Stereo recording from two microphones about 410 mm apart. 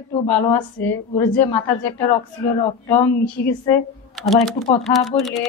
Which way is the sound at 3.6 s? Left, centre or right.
Centre.